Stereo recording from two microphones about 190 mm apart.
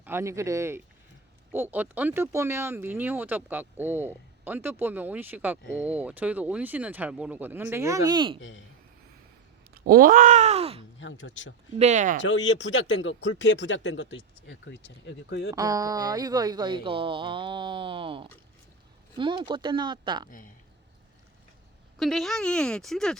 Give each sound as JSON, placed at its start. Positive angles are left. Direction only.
{"t": 0.0, "sound": "speech", "side_deg": -15}
{"t": 8.4, "sound": "speech", "side_deg": 80}
{"t": 9.7, "sound": "speech", "side_deg": -50}
{"t": 11.0, "sound": "speech", "side_deg": 85}
{"t": 11.8, "sound": "speech", "side_deg": -40}
{"t": 12.2, "sound": "speech", "side_deg": 75}
{"t": 15.5, "sound": "speech", "side_deg": -20}
{"t": 21.9, "sound": "speech", "side_deg": 0}